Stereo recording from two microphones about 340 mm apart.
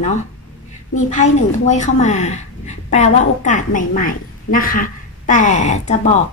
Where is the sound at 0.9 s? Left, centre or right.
Left.